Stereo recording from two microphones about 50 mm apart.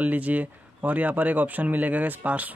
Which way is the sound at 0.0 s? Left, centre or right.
Right.